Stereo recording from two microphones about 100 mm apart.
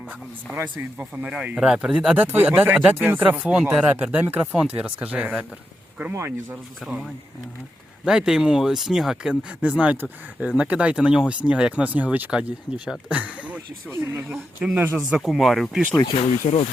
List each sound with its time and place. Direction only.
0.5 s speech: 20° right (ahead or behind)
6.0 s speech: 25° right (ahead or behind)
8.0 s speech: 10° right (ahead or behind)